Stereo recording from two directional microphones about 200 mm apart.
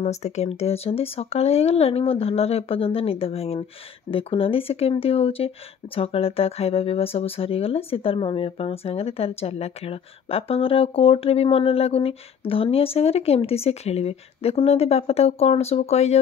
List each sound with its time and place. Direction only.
0.0 s speech: 35° left (ahead or behind)